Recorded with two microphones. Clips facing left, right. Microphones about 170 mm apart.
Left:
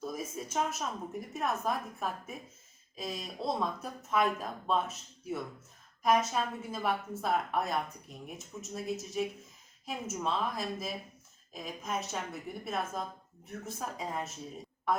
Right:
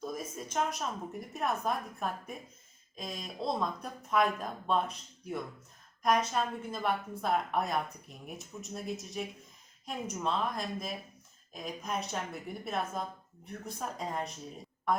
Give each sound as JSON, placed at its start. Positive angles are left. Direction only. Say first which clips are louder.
{"t": 0.0, "sound": "a woman's voice", "louder": "left 1 dB", "side_deg": 5}